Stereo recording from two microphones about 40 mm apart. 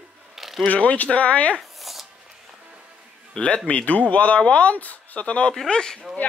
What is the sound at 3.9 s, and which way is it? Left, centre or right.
Speech, left.